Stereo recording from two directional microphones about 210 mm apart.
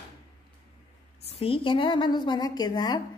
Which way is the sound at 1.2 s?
30° left (ahead or behind).